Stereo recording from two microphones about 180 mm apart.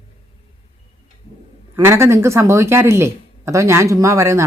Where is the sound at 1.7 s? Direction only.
15° right (ahead or behind).